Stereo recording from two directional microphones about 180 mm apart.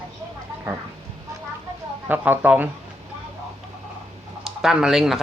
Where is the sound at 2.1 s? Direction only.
10° right (ahead or behind).